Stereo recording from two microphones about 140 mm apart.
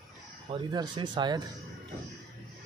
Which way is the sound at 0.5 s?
35° right (ahead or behind).